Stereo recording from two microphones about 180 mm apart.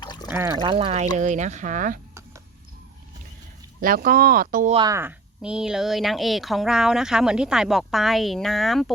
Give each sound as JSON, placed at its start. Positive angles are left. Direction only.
{"t": 0.0, "sound": "water", "side_deg": 25}
{"t": 0.3, "sound": "speech", "side_deg": -15}
{"t": 0.6, "sound": "speech", "side_deg": -30}
{"t": 3.8, "sound": "speech", "side_deg": -55}
{"t": 4.9, "sound": "speech", "side_deg": -15}
{"t": 5.4, "sound": "speech", "side_deg": -5}